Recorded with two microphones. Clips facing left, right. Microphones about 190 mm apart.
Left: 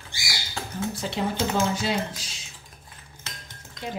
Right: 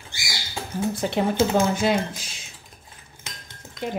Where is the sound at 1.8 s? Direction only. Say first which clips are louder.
Right 5 dB; 55° right (ahead or behind).